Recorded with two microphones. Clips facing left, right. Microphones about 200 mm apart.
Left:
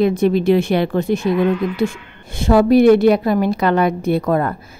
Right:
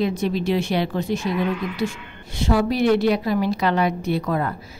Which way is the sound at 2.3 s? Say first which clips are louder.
Left 8 dB; 50° left (ahead or behind).